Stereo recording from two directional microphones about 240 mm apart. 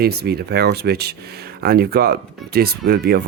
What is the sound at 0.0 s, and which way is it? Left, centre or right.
Speech, right.